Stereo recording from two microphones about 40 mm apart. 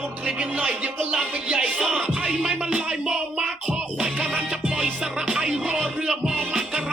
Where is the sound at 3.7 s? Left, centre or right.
Right.